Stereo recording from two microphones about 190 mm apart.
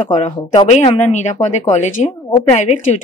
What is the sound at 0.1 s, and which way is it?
Speech, 30° left (ahead or behind).